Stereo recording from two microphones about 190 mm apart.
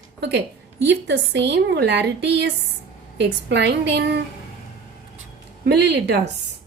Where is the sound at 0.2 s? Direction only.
60° right (ahead or behind).